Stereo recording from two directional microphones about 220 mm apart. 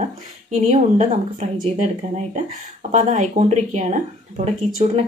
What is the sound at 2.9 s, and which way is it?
Speech, 35° right (ahead or behind).